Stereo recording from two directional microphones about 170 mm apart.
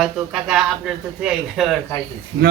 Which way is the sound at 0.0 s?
5° right (ahead or behind).